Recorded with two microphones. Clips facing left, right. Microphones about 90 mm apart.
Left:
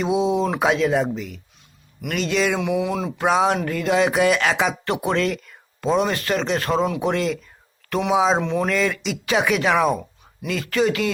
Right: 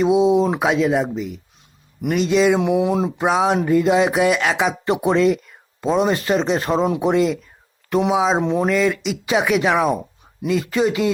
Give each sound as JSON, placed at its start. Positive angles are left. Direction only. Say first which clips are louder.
{"t": 0.0, "sound": "speech", "louder": "right 5 dB", "side_deg": -10}
{"t": 0.6, "sound": "speech", "louder": "right 1 dB", "side_deg": -5}
{"t": 2.6, "sound": "speech", "louder": "right 5 dB", "side_deg": -30}
{"t": 3.2, "sound": "speech", "louder": "left 1 dB", "side_deg": -5}
{"t": 4.9, "sound": "speech", "louder": "right 5 dB", "side_deg": -15}
{"t": 8.4, "sound": "speech", "louder": "right 3 dB", "side_deg": -25}
{"t": 8.6, "sound": "speech", "louder": "right 3 dB", "side_deg": -5}